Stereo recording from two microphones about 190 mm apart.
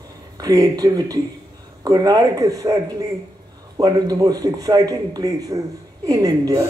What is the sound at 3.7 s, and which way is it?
Speech, 20° right (ahead or behind).